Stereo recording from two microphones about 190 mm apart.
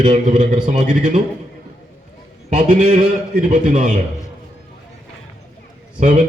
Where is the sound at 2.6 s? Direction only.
40° right (ahead or behind).